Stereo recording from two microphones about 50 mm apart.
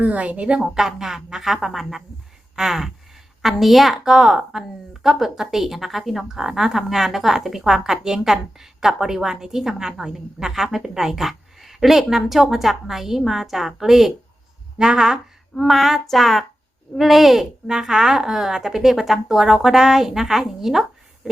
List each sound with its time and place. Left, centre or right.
0.0 s a woman's voice: right
0.7 s a woman's voice: centre
3.9 s a woman's voice: centre
15.5 s a woman's voice: centre